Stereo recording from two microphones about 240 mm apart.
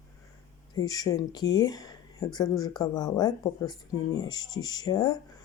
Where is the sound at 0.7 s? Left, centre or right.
Centre.